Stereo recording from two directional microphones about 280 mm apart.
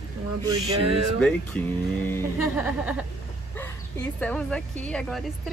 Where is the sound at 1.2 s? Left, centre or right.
Centre.